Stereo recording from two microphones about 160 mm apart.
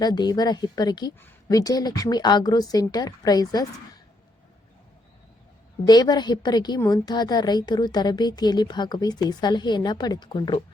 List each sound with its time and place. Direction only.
0.0 s a woman's voice: 25° left (ahead or behind)
5.8 s a woman's voice: 25° left (ahead or behind)